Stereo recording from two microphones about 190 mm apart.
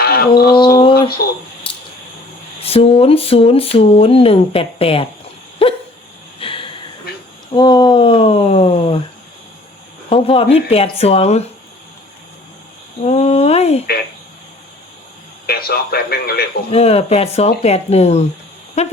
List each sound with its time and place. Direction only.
0.0 s a sound: 55° left (ahead or behind)
0.5 s a sound: 25° left (ahead or behind)
1.2 s a man's voice: 55° left (ahead or behind)
2.6 s speech: 30° left (ahead or behind)
6.4 s a sound: 30° left (ahead or behind)
7.5 s speech: 25° left (ahead or behind)
10.1 s speech: 30° left (ahead or behind)
13.1 s speech: 35° left (ahead or behind)
15.4 s a man's voice: 55° left (ahead or behind)
16.6 s speech: 35° left (ahead or behind)